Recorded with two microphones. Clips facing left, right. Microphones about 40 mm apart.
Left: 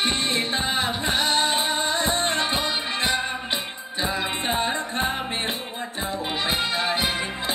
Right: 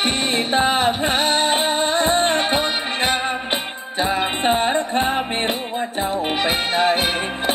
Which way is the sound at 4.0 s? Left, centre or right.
Right.